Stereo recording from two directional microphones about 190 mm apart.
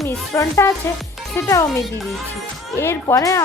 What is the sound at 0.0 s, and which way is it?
Speech, 15° left (ahead or behind).